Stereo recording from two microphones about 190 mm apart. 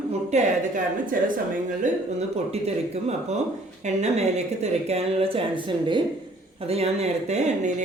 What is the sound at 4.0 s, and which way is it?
A woman's voice, 35° right (ahead or behind).